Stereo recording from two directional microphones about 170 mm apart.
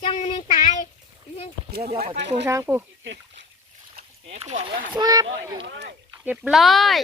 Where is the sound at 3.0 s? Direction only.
90° right.